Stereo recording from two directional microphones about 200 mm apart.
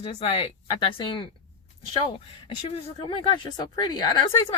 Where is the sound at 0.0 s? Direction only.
30° left (ahead or behind).